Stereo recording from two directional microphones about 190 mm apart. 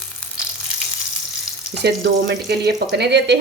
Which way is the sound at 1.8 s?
65° right (ahead or behind).